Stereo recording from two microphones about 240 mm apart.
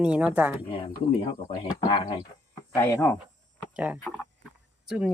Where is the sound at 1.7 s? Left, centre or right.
Centre.